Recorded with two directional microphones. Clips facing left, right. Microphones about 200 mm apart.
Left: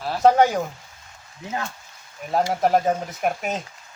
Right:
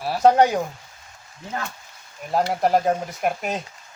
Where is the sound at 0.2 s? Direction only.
Centre (ahead or behind).